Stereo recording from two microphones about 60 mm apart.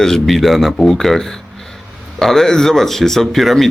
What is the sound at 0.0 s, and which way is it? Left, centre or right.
Speech, centre.